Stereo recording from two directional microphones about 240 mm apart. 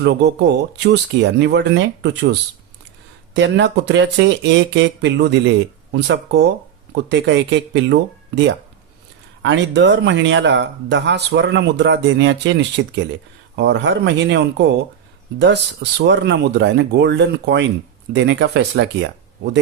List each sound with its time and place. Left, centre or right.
0.0 s speech: right
3.3 s speech: right
9.4 s speech: right